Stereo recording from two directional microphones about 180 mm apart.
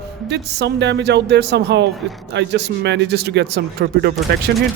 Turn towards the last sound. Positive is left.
turn(degrees=-65)  # may be behind; listen again after turning